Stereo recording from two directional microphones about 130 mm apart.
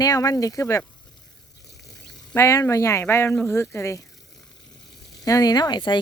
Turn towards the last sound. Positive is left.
turn(degrees=35)  # may be behind; listen again after turning